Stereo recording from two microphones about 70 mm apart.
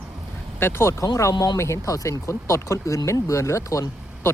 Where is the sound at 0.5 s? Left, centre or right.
Left.